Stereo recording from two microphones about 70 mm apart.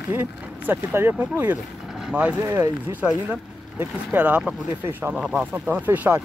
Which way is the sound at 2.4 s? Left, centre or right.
Right.